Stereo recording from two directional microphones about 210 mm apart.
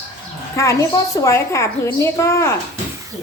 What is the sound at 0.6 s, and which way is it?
A woman's voice, 15° left (ahead or behind).